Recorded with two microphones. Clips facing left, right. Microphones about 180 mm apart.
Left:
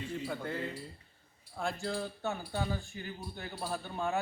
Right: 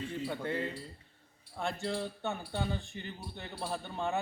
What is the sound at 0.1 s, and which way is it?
Speech, centre (ahead or behind).